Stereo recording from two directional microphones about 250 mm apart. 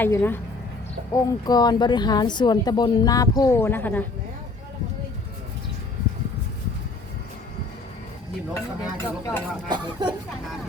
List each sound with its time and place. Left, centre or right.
0.0 s speech: centre
9.0 s speech: centre
9.6 s speech: centre